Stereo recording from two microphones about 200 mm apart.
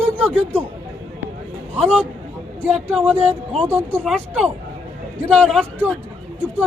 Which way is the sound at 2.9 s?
5° right (ahead or behind).